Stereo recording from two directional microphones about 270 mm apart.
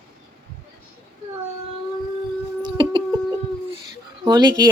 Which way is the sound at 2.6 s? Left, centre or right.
Centre.